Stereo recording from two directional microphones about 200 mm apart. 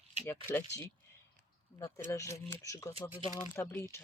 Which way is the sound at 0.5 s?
10° left (ahead or behind).